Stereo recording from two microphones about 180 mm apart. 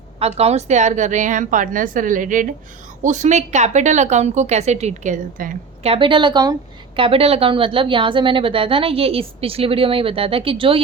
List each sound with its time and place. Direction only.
0.2 s a woman's voice: 35° right (ahead or behind)
5.9 s a woman's voice: 25° right (ahead or behind)